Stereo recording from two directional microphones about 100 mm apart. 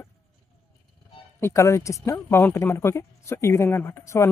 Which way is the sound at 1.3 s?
25° left (ahead or behind).